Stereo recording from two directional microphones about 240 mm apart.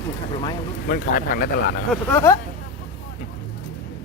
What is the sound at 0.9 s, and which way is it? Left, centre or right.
Speech, left.